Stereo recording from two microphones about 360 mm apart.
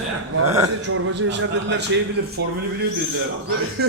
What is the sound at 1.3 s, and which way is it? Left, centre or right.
Speech, right.